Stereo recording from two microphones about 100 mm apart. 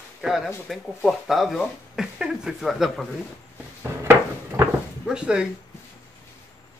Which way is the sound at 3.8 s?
25° right (ahead or behind).